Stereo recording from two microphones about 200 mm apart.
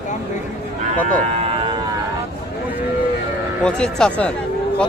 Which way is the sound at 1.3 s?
30° right (ahead or behind).